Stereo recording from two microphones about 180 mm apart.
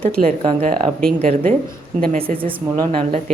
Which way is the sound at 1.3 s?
45° right (ahead or behind).